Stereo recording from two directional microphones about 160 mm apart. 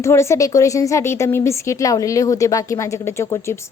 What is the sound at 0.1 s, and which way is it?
Speech, 20° left (ahead or behind).